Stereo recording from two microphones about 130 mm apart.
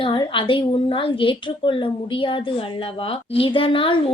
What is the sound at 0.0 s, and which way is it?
A woman's voice, 40° left (ahead or behind).